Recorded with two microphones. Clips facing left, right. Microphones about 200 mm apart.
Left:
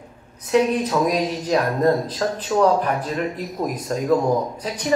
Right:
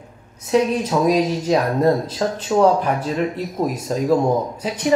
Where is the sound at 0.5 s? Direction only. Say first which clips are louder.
Right 1 dB; 30° right (ahead or behind).